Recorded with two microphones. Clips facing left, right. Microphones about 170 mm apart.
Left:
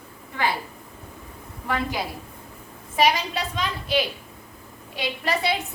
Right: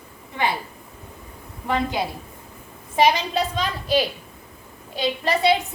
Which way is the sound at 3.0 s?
35° right (ahead or behind).